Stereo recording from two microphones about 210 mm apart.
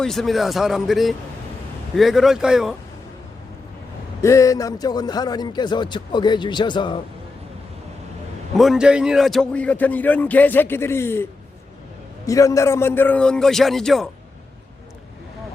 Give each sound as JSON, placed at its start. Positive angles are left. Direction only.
{"t": 0.0, "sound": "a man's voice", "side_deg": 0}
{"t": 4.2, "sound": "a man's voice", "side_deg": 15}
{"t": 8.5, "sound": "a man's voice", "side_deg": 0}